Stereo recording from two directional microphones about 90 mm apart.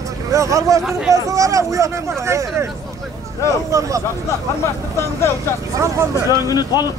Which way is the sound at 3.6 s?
35° right (ahead or behind).